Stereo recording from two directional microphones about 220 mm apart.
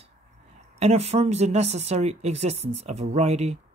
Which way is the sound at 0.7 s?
30° right (ahead or behind).